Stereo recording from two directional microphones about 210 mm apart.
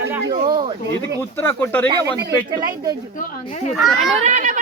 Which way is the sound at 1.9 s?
20° right (ahead or behind).